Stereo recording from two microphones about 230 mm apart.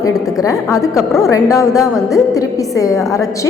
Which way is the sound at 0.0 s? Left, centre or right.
Centre.